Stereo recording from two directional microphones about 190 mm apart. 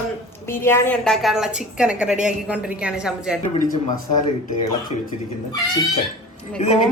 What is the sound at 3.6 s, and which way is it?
Speech, 45° left (ahead or behind).